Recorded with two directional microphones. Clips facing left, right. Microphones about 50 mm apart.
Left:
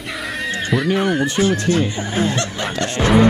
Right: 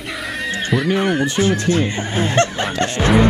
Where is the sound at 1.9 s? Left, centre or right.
Right.